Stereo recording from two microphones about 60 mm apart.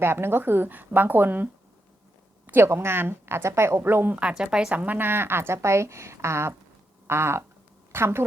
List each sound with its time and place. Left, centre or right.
0.0 s a woman's voice: right
2.5 s a woman's voice: right
4.1 s a woman's voice: centre
4.7 s a woman's voice: right